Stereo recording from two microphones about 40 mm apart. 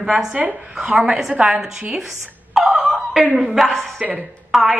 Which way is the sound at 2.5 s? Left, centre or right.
Centre.